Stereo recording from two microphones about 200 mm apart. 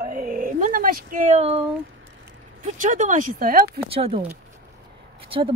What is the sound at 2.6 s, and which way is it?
Speech, 40° right (ahead or behind).